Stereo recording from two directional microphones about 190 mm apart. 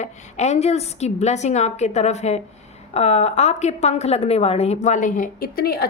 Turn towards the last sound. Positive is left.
turn(degrees=50)  # may be behind; listen again after turning